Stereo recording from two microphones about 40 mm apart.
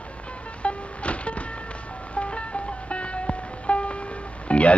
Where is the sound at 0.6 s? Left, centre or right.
Left.